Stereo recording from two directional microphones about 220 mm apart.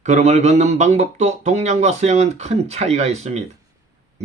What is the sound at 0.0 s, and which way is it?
Speech, 30° right (ahead or behind).